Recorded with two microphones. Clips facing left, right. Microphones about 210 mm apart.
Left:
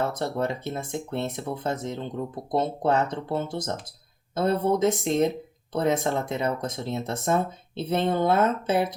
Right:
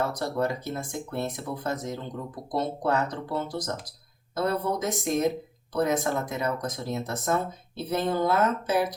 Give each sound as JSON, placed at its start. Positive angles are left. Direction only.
{"t": 0.0, "sound": "speech", "side_deg": 25}